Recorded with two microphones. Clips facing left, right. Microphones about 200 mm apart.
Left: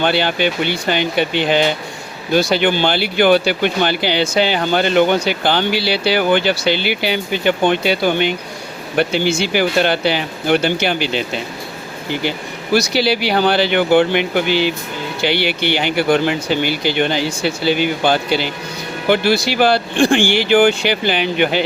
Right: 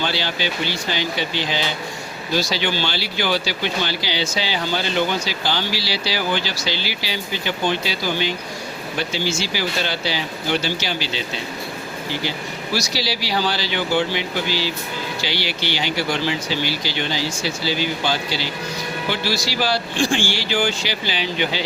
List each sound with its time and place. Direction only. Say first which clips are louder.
0.0 s speech: left 8 dB; 55° left (ahead or behind)
12.7 s speech: left 10 dB; 60° left (ahead or behind)